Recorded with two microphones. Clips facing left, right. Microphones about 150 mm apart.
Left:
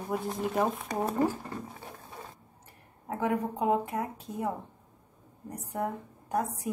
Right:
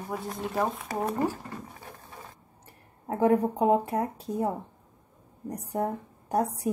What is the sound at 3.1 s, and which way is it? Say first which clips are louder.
Speech: right 7 dB; 35° right (ahead or behind).